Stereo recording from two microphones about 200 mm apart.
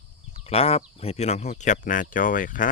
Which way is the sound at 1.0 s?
30° left (ahead or behind).